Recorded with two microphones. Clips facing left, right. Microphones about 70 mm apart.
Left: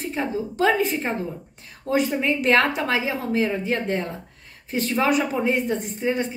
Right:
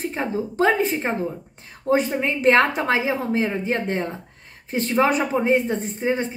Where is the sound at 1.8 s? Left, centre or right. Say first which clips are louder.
Right 1 dB; right.